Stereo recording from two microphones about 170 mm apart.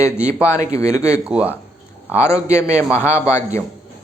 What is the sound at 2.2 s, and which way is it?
Speech, 15° left (ahead or behind).